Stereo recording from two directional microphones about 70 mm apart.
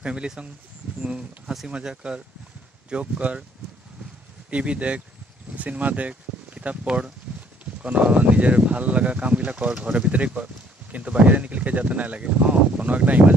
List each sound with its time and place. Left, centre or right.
0.0 s speech: centre
1.7 s speech: centre
4.5 s speech: centre
7.3 s a sound: centre
7.8 s speech: centre